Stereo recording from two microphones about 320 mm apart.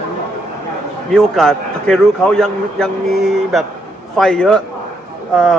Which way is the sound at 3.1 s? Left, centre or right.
Right.